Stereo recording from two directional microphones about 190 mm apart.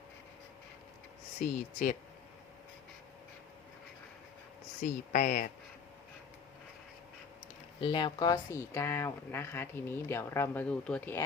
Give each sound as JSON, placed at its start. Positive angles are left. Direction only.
{"t": 1.4, "sound": "speech", "side_deg": 45}
{"t": 4.8, "sound": "speech", "side_deg": 45}
{"t": 7.8, "sound": "speech", "side_deg": 25}